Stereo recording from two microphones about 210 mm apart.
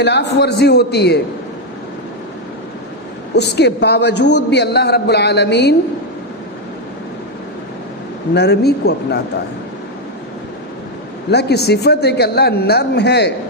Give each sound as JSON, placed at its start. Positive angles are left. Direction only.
{"t": 0.0, "sound": "speech", "side_deg": 55}
{"t": 3.3, "sound": "speech", "side_deg": 50}
{"t": 8.3, "sound": "speech", "side_deg": 50}
{"t": 11.3, "sound": "speech", "side_deg": 50}